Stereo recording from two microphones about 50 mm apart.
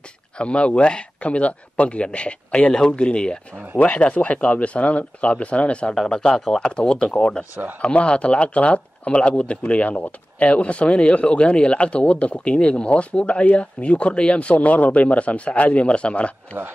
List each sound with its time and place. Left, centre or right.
0.4 s speech: left